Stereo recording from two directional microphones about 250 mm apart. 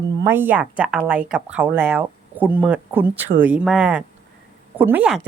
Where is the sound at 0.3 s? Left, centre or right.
Centre.